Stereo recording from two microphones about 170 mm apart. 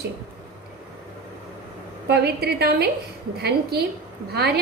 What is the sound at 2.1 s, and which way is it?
A woman's voice, 70° right (ahead or behind).